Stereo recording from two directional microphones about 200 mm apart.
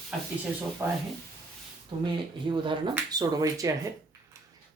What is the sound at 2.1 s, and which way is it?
Speech, 25° right (ahead or behind).